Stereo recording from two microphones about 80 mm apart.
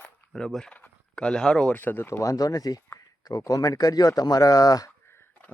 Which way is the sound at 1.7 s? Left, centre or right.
Left.